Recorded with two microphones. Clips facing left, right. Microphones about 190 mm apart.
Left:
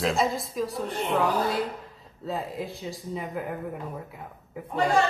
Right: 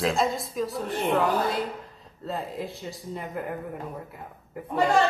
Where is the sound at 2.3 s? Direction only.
Centre (ahead or behind).